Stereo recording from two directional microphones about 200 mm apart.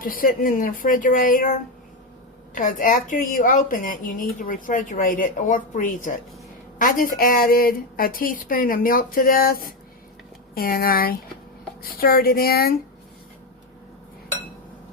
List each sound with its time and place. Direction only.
0.0 s speech: 45° left (ahead or behind)